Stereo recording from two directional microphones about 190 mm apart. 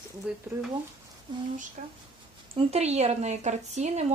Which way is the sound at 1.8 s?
40° right (ahead or behind).